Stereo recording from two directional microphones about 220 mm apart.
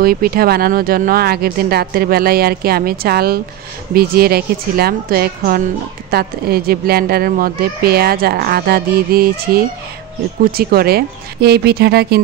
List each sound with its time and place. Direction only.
0.0 s speech: 40° right (ahead or behind)